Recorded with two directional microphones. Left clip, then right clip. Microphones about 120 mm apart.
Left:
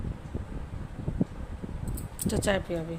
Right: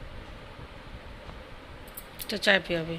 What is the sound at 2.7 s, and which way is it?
Speech, 10° left (ahead or behind).